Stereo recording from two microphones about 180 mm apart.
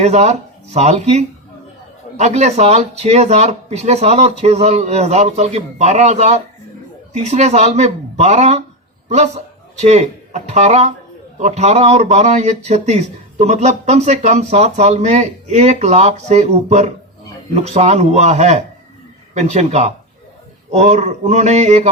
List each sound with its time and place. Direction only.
0.0 s a man's voice: 40° right (ahead or behind)